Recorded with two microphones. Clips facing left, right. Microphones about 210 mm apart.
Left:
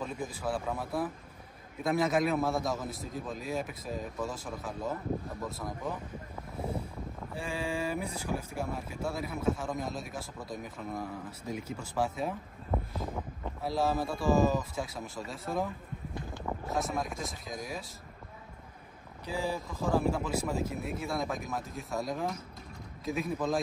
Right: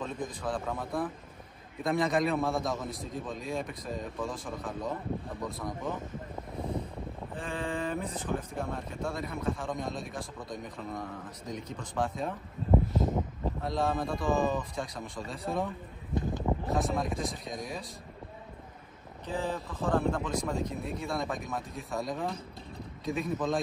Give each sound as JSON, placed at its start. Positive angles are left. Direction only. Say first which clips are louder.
{"t": 0.0, "sound": "speech", "louder": "even", "side_deg": 5}
{"t": 7.3, "sound": "speech", "louder": "even", "side_deg": 10}
{"t": 12.7, "sound": "a sound", "louder": "right 8 dB", "side_deg": -25}
{"t": 13.6, "sound": "speech", "louder": "left 1 dB", "side_deg": 5}
{"t": 16.2, "sound": "a sound", "louder": "right 8 dB", "side_deg": -20}
{"t": 16.6, "sound": "speech", "louder": "left 1 dB", "side_deg": 0}
{"t": 19.2, "sound": "speech", "louder": "even", "side_deg": 10}